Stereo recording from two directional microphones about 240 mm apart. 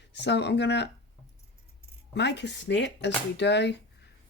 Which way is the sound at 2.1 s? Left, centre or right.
Left.